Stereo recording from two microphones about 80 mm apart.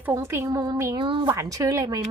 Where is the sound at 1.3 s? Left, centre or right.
Right.